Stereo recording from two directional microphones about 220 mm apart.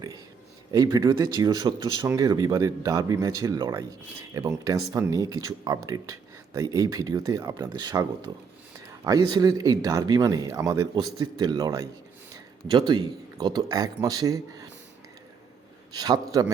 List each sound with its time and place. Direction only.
0.7 s speech: 15° right (ahead or behind)
15.9 s speech: 20° right (ahead or behind)